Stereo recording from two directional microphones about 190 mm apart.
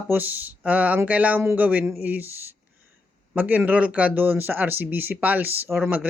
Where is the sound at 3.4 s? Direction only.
10° right (ahead or behind).